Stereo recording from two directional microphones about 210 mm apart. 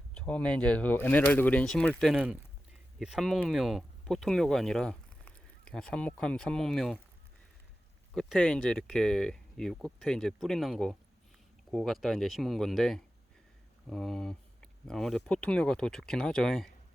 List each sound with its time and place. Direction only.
0.1 s speech: 5° left (ahead or behind)
8.1 s speech: centre (ahead or behind)